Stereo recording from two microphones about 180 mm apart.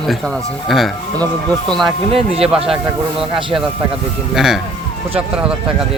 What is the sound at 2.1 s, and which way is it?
Speech, 30° right (ahead or behind).